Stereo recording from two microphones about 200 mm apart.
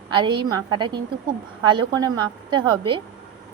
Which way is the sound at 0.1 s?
20° right (ahead or behind).